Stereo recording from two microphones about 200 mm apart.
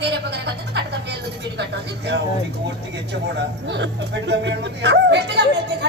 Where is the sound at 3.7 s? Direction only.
60° right (ahead or behind).